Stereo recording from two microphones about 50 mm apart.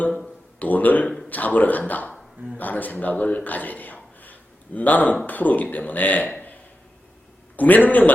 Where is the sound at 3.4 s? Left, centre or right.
Left.